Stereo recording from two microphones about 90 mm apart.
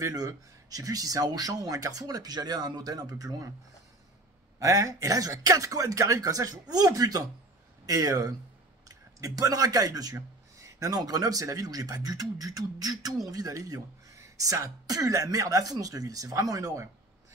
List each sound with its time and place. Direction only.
0.0 s speech: 40° right (ahead or behind)
4.6 s speech: 35° right (ahead or behind)